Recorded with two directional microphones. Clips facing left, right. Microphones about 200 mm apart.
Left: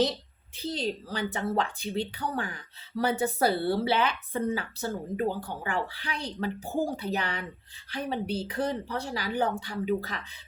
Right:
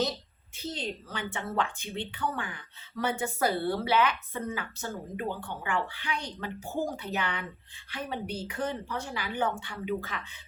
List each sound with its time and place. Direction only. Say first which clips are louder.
0.5 s a woman's voice: left 4 dB; 35° left (ahead or behind)